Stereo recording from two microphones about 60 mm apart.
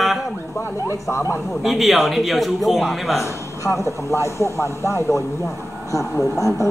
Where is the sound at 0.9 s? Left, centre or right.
Left.